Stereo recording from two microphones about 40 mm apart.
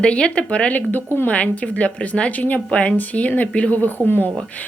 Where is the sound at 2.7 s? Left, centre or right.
Left.